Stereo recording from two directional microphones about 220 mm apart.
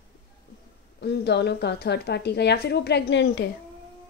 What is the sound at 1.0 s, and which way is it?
Speech, 50° left (ahead or behind).